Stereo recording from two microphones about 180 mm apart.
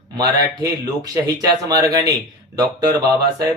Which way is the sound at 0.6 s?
20° right (ahead or behind).